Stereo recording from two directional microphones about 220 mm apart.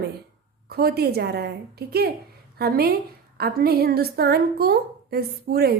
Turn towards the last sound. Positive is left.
turn(degrees=-45)  # may be behind; listen again after turning